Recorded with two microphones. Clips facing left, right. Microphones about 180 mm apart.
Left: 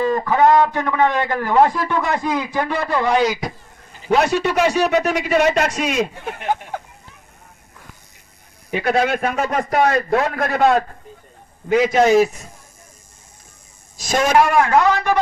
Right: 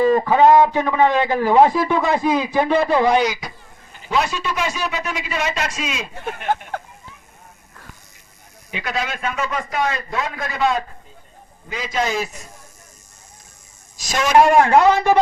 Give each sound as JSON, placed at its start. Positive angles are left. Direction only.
{"t": 0.0, "sound": "a man's voice", "side_deg": -20}
{"t": 4.1, "sound": "a man's voice", "side_deg": 60}
{"t": 6.5, "sound": "speech", "side_deg": 10}
{"t": 8.7, "sound": "a man's voice", "side_deg": 55}
{"t": 14.0, "sound": "a man's voice", "side_deg": 50}
{"t": 14.3, "sound": "a man's voice", "side_deg": -25}